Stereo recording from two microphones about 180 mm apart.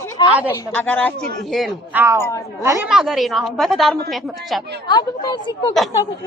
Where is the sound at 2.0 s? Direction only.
15° right (ahead or behind).